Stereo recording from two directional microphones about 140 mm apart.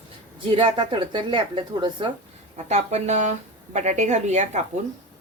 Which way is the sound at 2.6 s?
55° right (ahead or behind).